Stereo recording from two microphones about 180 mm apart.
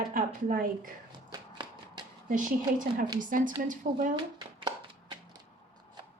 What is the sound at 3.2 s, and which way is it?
Speech, 50° right (ahead or behind).